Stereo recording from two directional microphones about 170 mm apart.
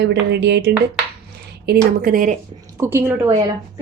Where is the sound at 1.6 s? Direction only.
65° right (ahead or behind).